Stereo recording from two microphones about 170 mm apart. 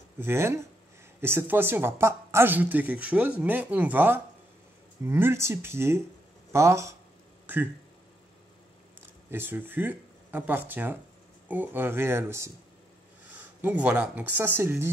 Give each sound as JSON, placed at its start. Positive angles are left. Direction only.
{"t": 0.2, "sound": "a woman's voice", "side_deg": -15}
{"t": 9.3, "sound": "a woman's voice", "side_deg": -10}